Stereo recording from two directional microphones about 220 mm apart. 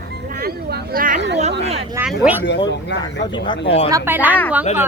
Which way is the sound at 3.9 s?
10° right (ahead or behind).